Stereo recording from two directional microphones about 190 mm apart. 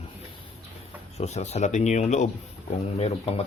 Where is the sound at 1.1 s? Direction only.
35° left (ahead or behind).